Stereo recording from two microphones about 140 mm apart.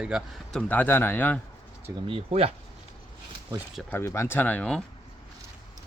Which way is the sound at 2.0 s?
45° right (ahead or behind).